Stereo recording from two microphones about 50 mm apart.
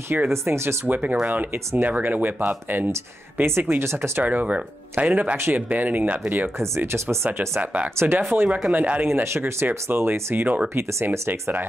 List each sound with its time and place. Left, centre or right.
0.3 s speech: right
0.8 s speech: right
3.3 s speech: right
4.2 s speech: right
6.8 s speech: right
8.7 s speech: right
9.0 s speech: right
9.4 s speech: right
10.3 s speech: right
10.7 s speech: right